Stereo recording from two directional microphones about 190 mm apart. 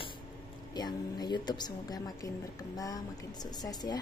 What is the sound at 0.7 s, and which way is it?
A woman's voice, 20° left (ahead or behind).